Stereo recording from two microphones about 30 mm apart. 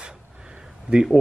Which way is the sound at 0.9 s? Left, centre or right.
Right.